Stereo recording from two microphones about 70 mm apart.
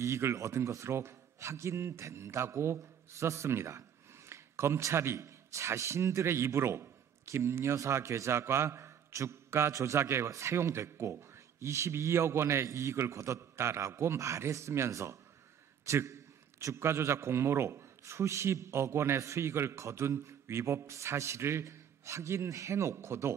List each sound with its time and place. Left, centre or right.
0.0 s a man's voice: right